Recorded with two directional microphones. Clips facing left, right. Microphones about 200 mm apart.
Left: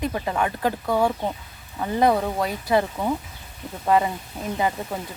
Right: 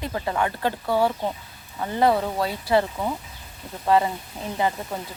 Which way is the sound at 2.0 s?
15° left (ahead or behind).